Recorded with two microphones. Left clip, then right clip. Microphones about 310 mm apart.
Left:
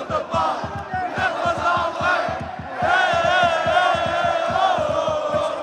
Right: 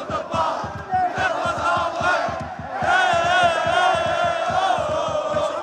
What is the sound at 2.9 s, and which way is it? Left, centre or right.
Crowd, centre.